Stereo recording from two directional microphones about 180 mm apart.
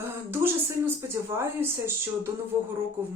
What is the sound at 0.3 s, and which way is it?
Speech, 10° right (ahead or behind).